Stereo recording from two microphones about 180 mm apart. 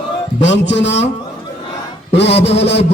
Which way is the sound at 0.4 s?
80° left.